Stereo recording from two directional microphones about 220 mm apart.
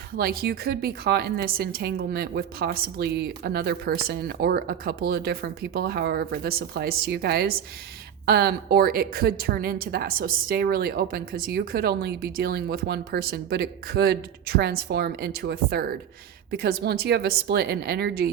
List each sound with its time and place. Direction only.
0.2 s a woman's voice: 45° right (ahead or behind)